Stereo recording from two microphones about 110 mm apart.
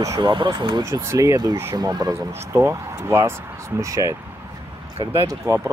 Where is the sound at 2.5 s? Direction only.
25° right (ahead or behind).